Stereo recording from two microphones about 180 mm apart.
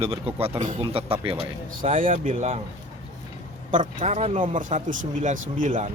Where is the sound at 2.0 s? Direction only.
50° right (ahead or behind).